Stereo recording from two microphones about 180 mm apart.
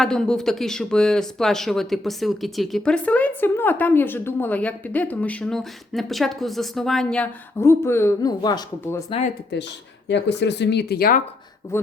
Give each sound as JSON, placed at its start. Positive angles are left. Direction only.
{"t": 0.0, "sound": "speech", "side_deg": 5}
{"t": 10.1, "sound": "speech", "side_deg": 75}
{"t": 11.7, "sound": "speech", "side_deg": 15}